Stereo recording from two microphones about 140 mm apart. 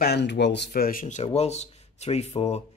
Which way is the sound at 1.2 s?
50° left (ahead or behind).